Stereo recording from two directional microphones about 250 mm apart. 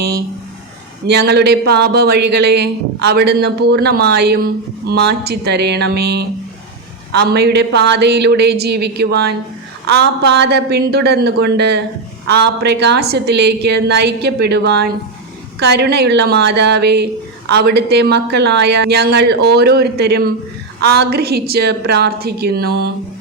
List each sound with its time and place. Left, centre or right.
1.0 s speech: right